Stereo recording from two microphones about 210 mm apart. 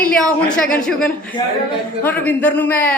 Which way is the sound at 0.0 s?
5° left (ahead or behind).